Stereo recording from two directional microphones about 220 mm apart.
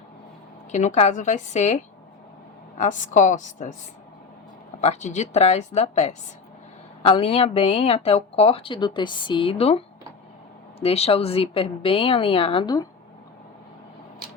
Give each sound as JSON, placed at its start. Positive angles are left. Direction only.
{"t": 0.7, "sound": "a woman's voice", "side_deg": 30}
{"t": 4.8, "sound": "a woman's voice", "side_deg": 30}